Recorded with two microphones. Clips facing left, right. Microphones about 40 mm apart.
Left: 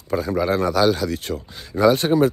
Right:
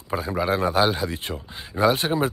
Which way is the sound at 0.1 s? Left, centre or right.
Right.